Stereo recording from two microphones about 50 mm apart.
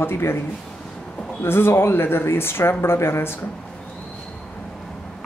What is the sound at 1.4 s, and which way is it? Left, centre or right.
Speech, left.